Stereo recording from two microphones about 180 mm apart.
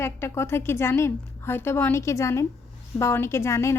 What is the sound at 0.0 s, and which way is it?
A woman's voice, 15° left (ahead or behind).